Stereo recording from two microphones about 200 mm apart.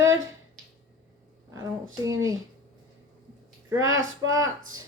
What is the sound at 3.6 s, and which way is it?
Speech, 15° right (ahead or behind).